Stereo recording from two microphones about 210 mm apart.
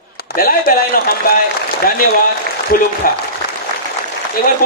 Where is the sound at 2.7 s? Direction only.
45° left (ahead or behind).